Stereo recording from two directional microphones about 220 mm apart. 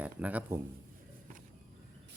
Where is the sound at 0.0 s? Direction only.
5° right (ahead or behind).